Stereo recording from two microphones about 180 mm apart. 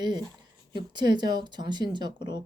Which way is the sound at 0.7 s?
25° right (ahead or behind).